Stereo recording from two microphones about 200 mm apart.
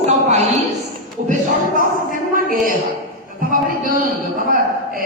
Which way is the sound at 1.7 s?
40° right (ahead or behind).